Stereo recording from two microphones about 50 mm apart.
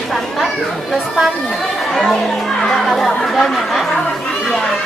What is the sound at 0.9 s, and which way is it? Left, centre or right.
Speech, centre.